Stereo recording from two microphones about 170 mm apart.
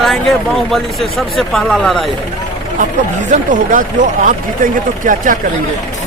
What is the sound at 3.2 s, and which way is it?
Speech, 50° right (ahead or behind).